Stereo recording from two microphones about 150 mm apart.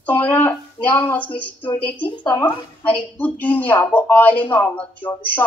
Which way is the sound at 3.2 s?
10° left (ahead or behind).